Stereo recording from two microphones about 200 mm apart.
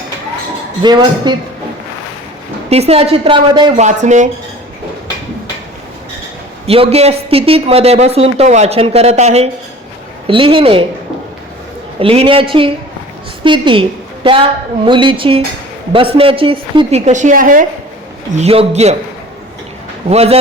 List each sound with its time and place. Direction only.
0.8 s a woman's voice: 20° right (ahead or behind)
2.6 s a woman's voice: 30° right (ahead or behind)
3.8 s speech: 35° right (ahead or behind)
6.7 s a woman's voice: 30° right (ahead or behind)
11.9 s a woman's voice: 30° right (ahead or behind)
14.8 s a woman's voice: 25° right (ahead or behind)
20.1 s speech: 30° right (ahead or behind)